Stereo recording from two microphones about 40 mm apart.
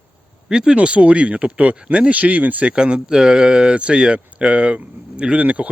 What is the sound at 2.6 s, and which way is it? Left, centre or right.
Speech, right.